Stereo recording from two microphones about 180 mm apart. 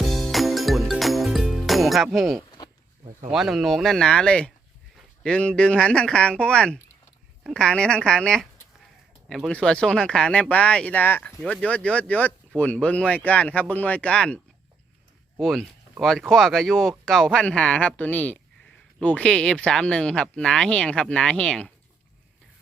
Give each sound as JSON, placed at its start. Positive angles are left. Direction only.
{"t": 0.0, "sound": "music", "side_deg": 0}
{"t": 2.6, "sound": "a sound", "side_deg": 20}
{"t": 3.3, "sound": "speech", "side_deg": 0}